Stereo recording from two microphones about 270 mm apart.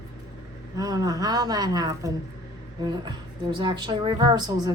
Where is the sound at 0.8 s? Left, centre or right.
Centre.